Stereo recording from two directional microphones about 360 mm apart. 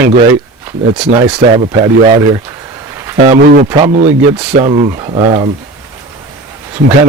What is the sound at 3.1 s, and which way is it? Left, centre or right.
Speech, centre.